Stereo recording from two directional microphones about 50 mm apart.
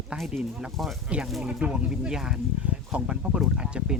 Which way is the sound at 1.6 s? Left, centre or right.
Centre.